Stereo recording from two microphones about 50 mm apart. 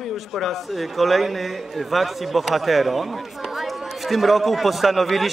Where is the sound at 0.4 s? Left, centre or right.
Centre.